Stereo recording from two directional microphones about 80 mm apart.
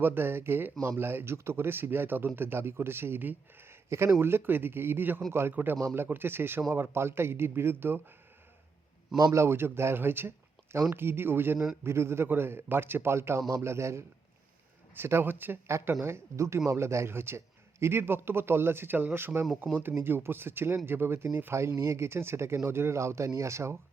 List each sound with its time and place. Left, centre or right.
0.0 s speech: right
9.1 s speech: right